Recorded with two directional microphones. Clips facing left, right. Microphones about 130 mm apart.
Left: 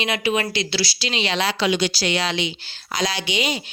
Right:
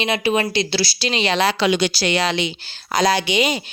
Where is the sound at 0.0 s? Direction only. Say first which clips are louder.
Right 3 dB; 30° right (ahead or behind); by 1.5 s 45° right (ahead or behind).